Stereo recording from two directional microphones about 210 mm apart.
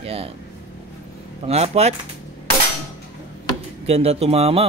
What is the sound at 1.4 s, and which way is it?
Speech, 30° right (ahead or behind).